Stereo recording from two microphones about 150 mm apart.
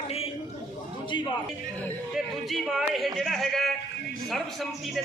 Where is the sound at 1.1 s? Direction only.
35° left (ahead or behind).